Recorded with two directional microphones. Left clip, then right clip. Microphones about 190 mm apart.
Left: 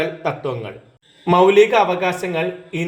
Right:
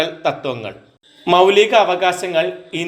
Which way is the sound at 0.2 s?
25° right (ahead or behind).